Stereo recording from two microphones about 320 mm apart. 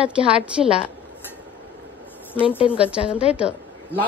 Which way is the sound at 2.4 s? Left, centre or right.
Centre.